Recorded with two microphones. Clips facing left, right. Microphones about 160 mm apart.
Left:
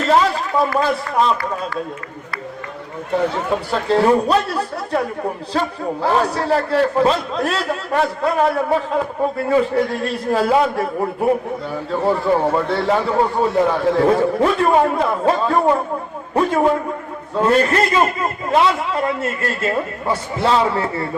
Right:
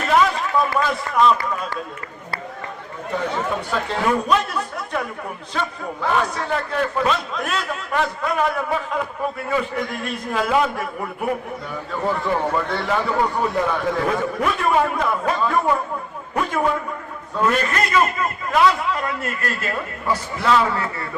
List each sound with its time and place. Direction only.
0.1 s a sound: 30° left (ahead or behind)
3.7 s speech: 35° left (ahead or behind)
12.5 s a man's voice: 30° left (ahead or behind)